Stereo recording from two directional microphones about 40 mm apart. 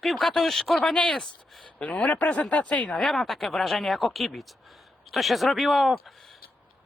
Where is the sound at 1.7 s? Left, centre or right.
Left.